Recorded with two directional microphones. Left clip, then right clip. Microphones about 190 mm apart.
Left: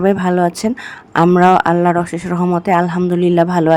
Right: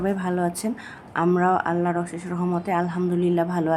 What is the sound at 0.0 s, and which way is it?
Speech, 50° left (ahead or behind).